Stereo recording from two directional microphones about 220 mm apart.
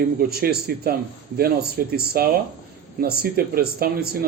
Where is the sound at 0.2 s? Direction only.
45° right (ahead or behind).